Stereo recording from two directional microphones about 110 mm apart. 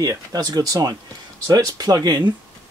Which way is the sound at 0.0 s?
35° right (ahead or behind).